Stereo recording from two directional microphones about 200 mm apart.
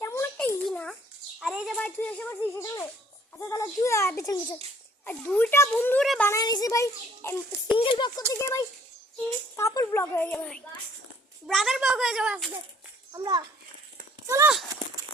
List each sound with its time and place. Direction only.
0.0 s a sound: 15° left (ahead or behind)
1.4 s a child's voice: centre (ahead or behind)
7.8 s a child's voice: 25° left (ahead or behind); by 12.5 s 5° right (ahead or behind)
13.1 s a child's voice: 20° right (ahead or behind)